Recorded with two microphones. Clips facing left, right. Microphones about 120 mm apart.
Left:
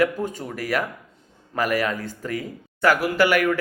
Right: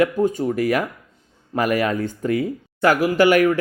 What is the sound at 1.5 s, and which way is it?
Speech, 25° right (ahead or behind).